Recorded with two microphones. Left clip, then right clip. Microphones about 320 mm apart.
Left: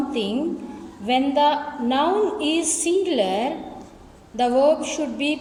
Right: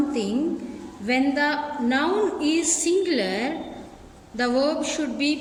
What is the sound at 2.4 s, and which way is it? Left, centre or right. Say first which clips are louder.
A woman's voice: even; left.